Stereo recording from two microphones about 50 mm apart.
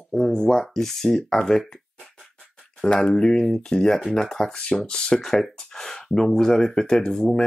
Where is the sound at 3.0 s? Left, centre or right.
Centre.